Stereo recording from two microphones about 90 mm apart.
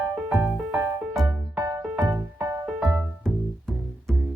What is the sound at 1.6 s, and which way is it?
Music, 40° right (ahead or behind).